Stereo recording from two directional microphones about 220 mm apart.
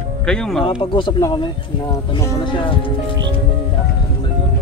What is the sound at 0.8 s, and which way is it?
Speech, 20° left (ahead or behind).